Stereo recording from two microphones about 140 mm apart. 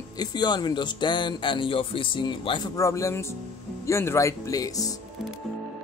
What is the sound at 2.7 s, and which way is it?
Speech, 20° left (ahead or behind).